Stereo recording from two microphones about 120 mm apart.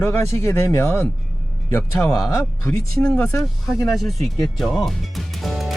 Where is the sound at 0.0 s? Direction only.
20° left (ahead or behind).